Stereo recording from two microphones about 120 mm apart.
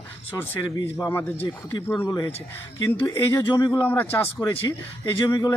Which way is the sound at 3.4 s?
35° left (ahead or behind).